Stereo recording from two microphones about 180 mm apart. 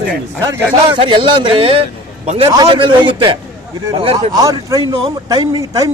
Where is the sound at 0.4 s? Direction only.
20° right (ahead or behind).